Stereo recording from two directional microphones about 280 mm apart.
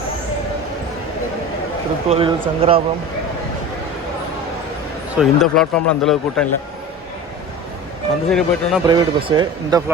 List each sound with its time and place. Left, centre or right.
2.0 s speech: right
5.1 s speech: centre
8.3 s speech: centre
8.9 s speech: centre